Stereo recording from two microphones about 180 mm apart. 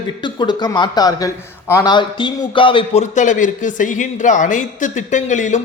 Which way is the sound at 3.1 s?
45° left (ahead or behind).